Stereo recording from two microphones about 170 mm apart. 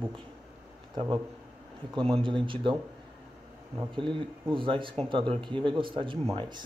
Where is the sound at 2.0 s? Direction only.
30° right (ahead or behind).